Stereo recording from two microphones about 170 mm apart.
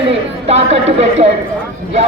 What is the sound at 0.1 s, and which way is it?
Speech, 40° right (ahead or behind).